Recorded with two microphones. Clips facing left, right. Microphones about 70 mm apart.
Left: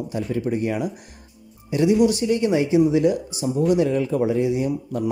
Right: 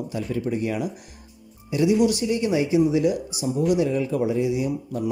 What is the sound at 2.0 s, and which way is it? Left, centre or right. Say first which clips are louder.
Speech: left 3 dB; left.